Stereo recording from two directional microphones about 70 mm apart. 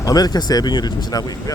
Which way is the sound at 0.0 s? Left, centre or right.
Left.